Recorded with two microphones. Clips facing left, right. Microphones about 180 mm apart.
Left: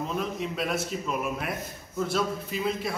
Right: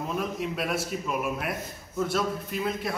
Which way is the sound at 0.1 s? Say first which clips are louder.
Right 1 dB; 5° right (ahead or behind).